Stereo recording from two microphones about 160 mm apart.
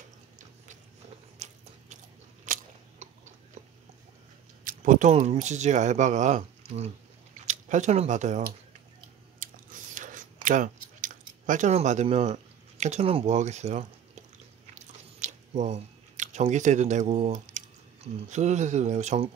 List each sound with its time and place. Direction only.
1.4 s biting: 45° right (ahead or behind)
4.6 s speech: 55° right (ahead or behind)
9.4 s chewing: 55° right (ahead or behind)
14.7 s biting: 45° right (ahead or behind)
18.3 s speech: 45° right (ahead or behind)